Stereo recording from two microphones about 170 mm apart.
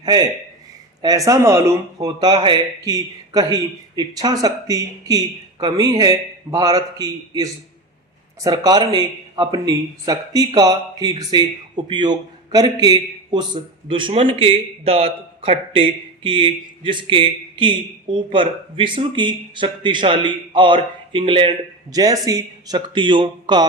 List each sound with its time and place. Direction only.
0.0 s a man's voice: 25° right (ahead or behind)